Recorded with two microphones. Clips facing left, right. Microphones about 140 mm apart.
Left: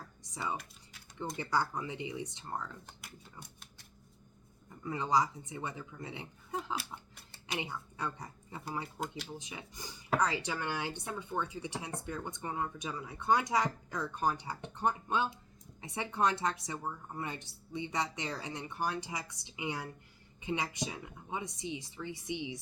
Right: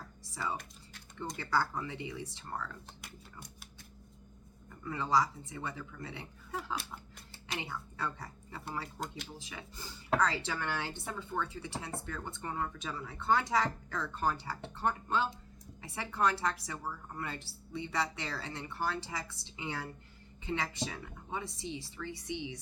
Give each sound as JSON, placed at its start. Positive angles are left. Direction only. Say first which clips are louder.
{"t": 0.3, "sound": "speech", "louder": "even", "side_deg": 20}
{"t": 0.5, "sound": "computer keyboard", "louder": "left 1 dB", "side_deg": 0}
{"t": 1.4, "sound": "a woman's voice", "louder": "right 1 dB", "side_deg": 20}
{"t": 3.0, "sound": "a sound", "louder": "right 1 dB", "side_deg": 0}
{"t": 4.8, "sound": "a woman's voice", "louder": "even", "side_deg": 20}
{"t": 9.0, "sound": "speech", "louder": "left 2 dB", "side_deg": 5}
{"t": 9.4, "sound": "a woman's voice", "louder": "even", "side_deg": 20}